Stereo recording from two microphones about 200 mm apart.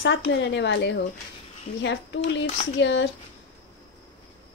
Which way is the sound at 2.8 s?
65° left (ahead or behind).